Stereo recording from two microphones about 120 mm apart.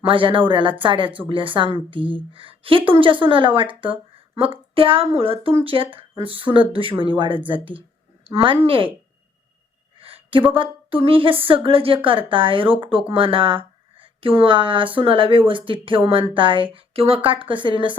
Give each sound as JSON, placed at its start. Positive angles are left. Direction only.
{"t": 0.1, "sound": "a woman's voice", "side_deg": -45}
{"t": 10.0, "sound": "speech", "side_deg": -50}